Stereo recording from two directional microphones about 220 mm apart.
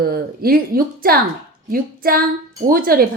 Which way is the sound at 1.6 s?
40° right (ahead or behind).